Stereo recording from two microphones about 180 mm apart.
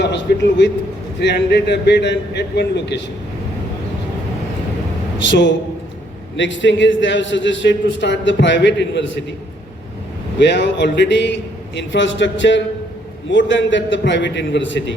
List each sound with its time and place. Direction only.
0.0 s a man's voice: 70° left (ahead or behind)
5.3 s a man's voice: 80° left
6.3 s a man's voice: 90° left
10.4 s a man's voice: 75° left (ahead or behind); by 14.9 s 90° left